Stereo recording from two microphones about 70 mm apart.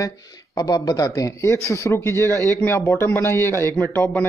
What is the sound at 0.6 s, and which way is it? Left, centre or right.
A man's voice, left.